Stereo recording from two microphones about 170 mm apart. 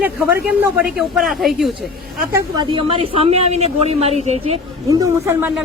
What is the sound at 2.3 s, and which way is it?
Speech, 25° right (ahead or behind).